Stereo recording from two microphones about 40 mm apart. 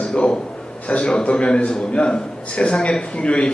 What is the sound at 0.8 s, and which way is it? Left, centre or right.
A man's voice, left.